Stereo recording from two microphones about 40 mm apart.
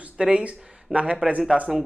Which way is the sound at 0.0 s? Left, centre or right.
Right.